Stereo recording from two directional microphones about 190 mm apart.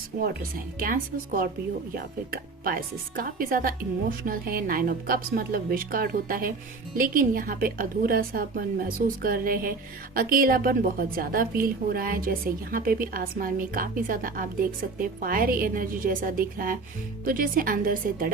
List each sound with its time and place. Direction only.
0.2 s a woman's voice: 50° right (ahead or behind)